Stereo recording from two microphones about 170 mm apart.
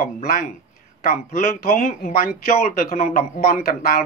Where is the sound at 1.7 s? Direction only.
60° left (ahead or behind).